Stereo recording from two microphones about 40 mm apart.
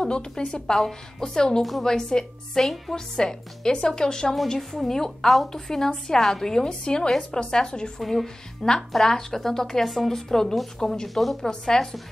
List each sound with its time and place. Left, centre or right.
0.0 s a woman's voice: left
1.6 s a woman's voice: centre
1.9 s a woman's voice: centre
2.6 s a woman's voice: centre
3.2 s a woman's voice: centre
8.0 s a woman's voice: centre
11.4 s a woman's voice: centre